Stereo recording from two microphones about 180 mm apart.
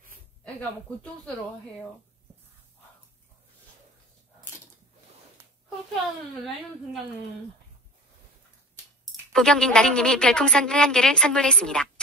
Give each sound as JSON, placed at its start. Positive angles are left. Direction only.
{"t": 0.6, "sound": "speech", "side_deg": 5}
{"t": 9.0, "sound": "speech", "side_deg": 5}